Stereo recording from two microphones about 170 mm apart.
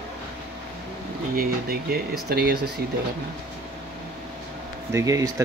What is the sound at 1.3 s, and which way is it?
Speech, 60° right (ahead or behind).